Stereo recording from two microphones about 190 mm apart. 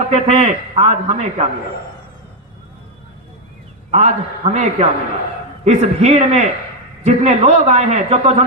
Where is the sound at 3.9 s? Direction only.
35° right (ahead or behind).